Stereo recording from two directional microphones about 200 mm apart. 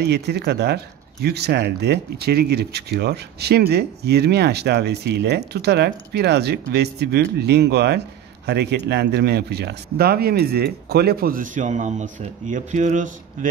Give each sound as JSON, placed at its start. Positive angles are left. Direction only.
{"t": 0.0, "sound": "speech", "side_deg": -55}